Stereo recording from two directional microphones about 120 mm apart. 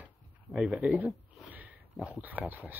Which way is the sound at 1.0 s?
10° right (ahead or behind).